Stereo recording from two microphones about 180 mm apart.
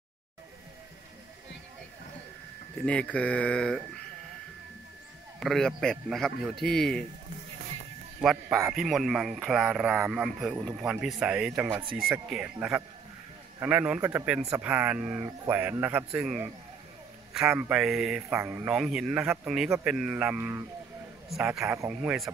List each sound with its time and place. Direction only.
2.8 s speech: 5° left (ahead or behind)
5.4 s speech: centre (ahead or behind)
8.2 s speech: centre (ahead or behind)
11.7 s speech: 30° right (ahead or behind)
12.5 s speech: 5° right (ahead or behind)